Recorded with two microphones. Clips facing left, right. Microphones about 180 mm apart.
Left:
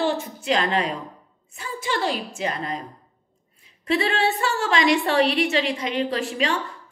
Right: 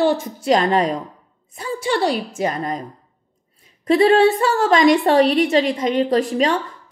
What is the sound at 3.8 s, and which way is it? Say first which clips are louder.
A woman's voice: right 9 dB; 40° right (ahead or behind).